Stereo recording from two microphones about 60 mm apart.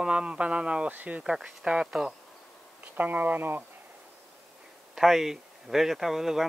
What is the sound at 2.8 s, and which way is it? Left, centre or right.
Speech, right.